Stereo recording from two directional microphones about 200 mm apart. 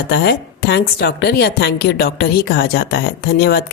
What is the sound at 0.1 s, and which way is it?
A woman's voice, 55° left (ahead or behind).